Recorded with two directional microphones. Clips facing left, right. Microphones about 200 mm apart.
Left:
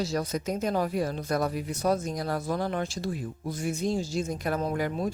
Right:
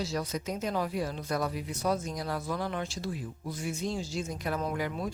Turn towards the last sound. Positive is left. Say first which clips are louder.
# left 4 dB
turn(degrees=45)  # may be behind; listen again after turning